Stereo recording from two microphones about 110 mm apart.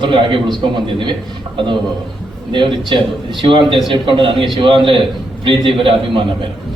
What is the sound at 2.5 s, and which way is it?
A man's voice, 50° right (ahead or behind).